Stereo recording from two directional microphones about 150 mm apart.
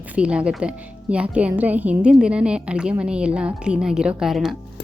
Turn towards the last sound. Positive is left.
turn(degrees=0)  # may be behind; listen again after turning